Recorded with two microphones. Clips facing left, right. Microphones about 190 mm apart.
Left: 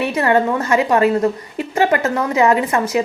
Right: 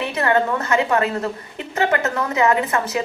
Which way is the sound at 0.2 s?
25° left (ahead or behind).